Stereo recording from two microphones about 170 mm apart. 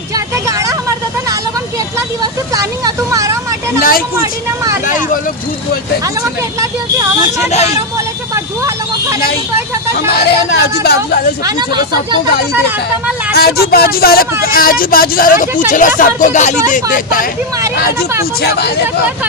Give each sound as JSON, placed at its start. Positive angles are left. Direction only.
{"t": 0.4, "sound": "vehicle", "side_deg": -20}
{"t": 3.8, "sound": "speech", "side_deg": 60}
{"t": 4.2, "sound": "speech", "side_deg": -20}
{"t": 10.1, "sound": "speech", "side_deg": 70}
{"t": 13.3, "sound": "speech", "side_deg": 65}
{"t": 18.4, "sound": "speech", "side_deg": 75}